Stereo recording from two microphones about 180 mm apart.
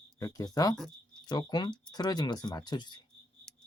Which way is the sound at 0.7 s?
5° left (ahead or behind).